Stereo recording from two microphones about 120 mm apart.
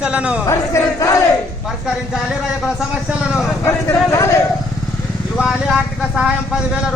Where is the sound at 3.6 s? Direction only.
25° left (ahead or behind).